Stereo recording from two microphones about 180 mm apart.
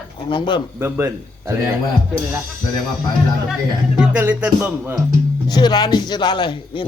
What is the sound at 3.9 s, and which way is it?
Speech, 5° right (ahead or behind).